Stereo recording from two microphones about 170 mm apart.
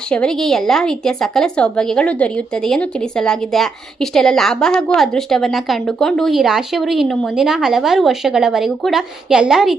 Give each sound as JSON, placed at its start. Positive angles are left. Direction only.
{"t": 0.1, "sound": "a woman's voice", "side_deg": 5}